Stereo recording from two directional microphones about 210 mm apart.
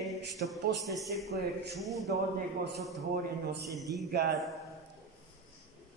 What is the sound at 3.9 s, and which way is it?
Speech, 50° right (ahead or behind).